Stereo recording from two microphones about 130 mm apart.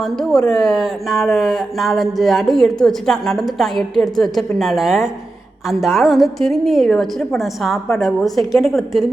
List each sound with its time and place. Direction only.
0.0 s speech: 5° left (ahead or behind)